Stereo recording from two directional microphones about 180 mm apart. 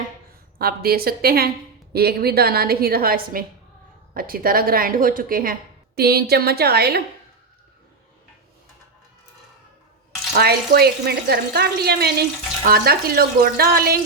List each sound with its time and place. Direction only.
0.6 s a woman's voice: 60° right (ahead or behind)
10.3 s speech: 60° right (ahead or behind)